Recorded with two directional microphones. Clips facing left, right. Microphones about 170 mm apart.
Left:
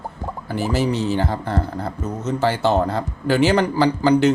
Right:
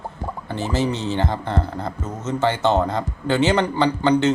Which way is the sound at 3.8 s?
10° left (ahead or behind).